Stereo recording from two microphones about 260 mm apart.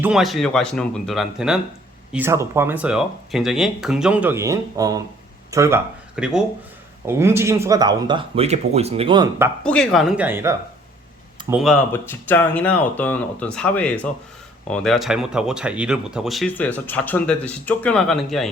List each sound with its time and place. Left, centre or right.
0.0 s speech: centre
9.6 s speech: centre